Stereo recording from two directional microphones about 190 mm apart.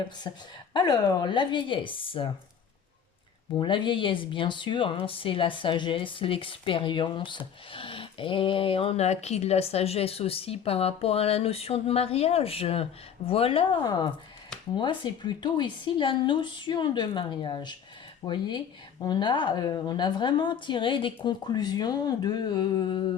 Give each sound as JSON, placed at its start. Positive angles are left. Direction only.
{"t": 0.3, "sound": "speech", "side_deg": 20}
{"t": 3.5, "sound": "speech", "side_deg": 25}